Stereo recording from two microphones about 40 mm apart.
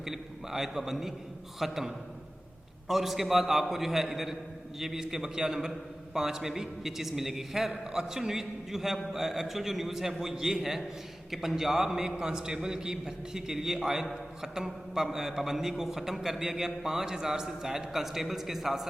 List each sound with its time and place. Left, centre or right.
0.0 s a man's voice: centre